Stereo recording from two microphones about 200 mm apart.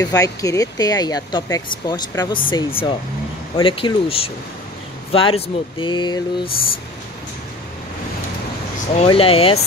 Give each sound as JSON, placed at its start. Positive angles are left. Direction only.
{"t": 0.0, "sound": "speech", "side_deg": 15}
{"t": 8.9, "sound": "speech", "side_deg": 30}